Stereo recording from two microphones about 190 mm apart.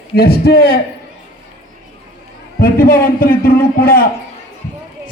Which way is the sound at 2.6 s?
50° left (ahead or behind).